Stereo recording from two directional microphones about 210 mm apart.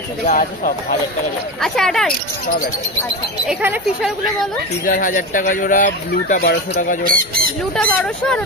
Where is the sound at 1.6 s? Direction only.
Centre (ahead or behind).